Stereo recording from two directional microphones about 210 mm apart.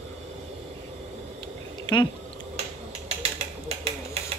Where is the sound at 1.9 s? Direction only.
20° left (ahead or behind).